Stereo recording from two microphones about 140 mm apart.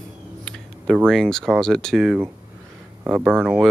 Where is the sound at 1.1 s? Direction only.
5° left (ahead or behind).